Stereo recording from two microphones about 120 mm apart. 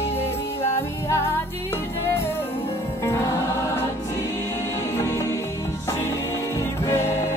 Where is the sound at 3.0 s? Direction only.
25° left (ahead or behind).